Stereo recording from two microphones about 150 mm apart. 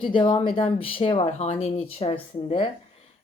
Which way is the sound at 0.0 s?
35° left (ahead or behind).